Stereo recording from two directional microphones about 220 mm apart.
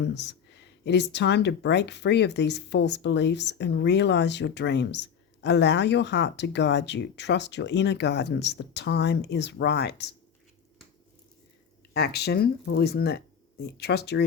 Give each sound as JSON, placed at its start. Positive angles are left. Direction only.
{"t": 0.0, "sound": "speech", "side_deg": 50}
{"t": 11.9, "sound": "speech", "side_deg": 45}